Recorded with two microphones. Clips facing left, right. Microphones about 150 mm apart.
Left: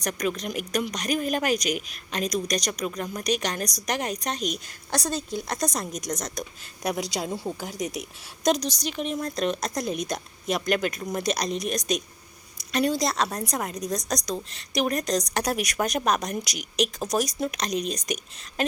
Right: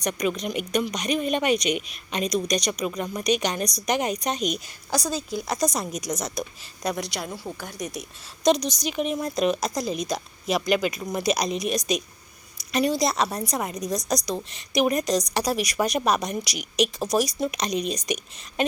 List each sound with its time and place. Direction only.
0.0 s speech: centre (ahead or behind)
6.8 s a woman's voice: 15° left (ahead or behind)
8.5 s speech: 35° left (ahead or behind)
8.8 s speech: 5° right (ahead or behind)